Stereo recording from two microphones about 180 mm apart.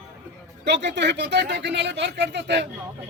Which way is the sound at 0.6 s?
75° right (ahead or behind).